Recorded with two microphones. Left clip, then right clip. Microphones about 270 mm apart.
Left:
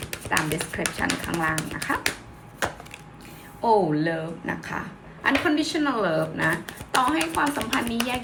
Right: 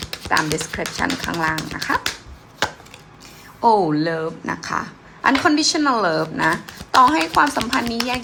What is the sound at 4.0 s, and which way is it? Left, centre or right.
Speech, centre.